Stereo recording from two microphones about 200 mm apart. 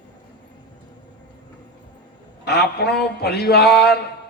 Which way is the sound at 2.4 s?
55° left (ahead or behind).